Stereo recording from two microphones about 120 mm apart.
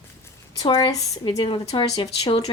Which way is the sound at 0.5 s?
35° left (ahead or behind).